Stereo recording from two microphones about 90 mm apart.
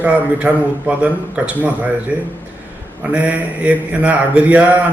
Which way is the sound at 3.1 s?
15° right (ahead or behind).